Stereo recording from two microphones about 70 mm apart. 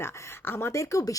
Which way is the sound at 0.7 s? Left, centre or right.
Left.